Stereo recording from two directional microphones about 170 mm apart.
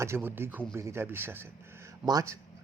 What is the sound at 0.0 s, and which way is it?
Speech, 15° right (ahead or behind).